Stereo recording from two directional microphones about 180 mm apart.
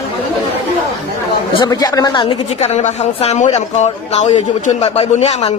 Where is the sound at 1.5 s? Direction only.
20° left (ahead or behind).